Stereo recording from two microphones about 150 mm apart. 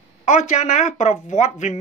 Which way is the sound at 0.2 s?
55° left (ahead or behind).